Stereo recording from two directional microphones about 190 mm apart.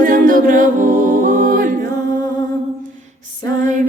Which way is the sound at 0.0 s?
45° right (ahead or behind).